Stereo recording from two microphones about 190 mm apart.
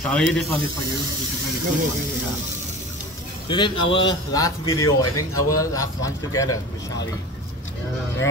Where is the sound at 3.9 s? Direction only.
20° left (ahead or behind).